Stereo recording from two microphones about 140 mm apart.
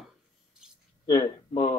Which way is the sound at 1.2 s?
45° left (ahead or behind).